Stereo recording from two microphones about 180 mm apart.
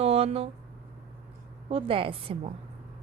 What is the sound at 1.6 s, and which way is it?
Speech, 30° right (ahead or behind).